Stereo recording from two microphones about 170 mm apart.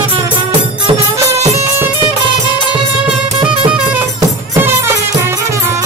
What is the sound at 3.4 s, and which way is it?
Music, 30° right (ahead or behind).